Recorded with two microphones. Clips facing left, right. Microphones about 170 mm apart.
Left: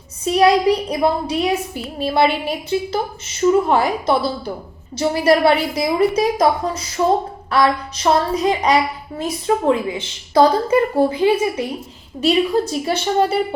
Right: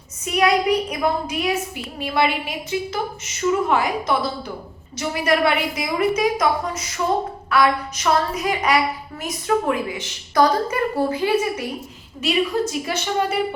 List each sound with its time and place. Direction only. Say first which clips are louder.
0.3 s a woman's voice: left 5 dB; 30° left (ahead or behind)
11.1 s a child's voice: left 4 dB; 15° left (ahead or behind)
12.2 s a woman's voice: left 4 dB; 30° left (ahead or behind)